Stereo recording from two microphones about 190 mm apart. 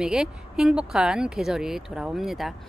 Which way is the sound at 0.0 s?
5° right (ahead or behind).